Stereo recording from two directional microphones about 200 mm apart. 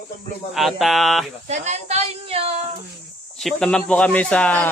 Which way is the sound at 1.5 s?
35° right (ahead or behind).